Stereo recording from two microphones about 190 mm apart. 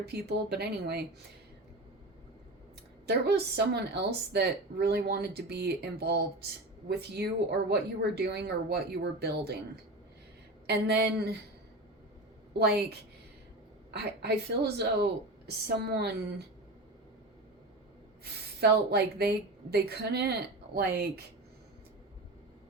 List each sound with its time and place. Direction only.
0.1 s a woman's voice: 55° right (ahead or behind)
3.1 s a woman's voice: 60° right (ahead or behind)
10.7 s a woman's voice: 60° right (ahead or behind)
12.5 s a woman's voice: 55° right (ahead or behind)
18.6 s a woman's voice: 55° right (ahead or behind)